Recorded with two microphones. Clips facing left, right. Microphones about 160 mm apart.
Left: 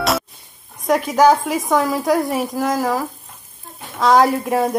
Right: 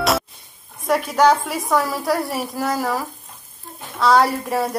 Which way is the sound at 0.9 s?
Centre (ahead or behind).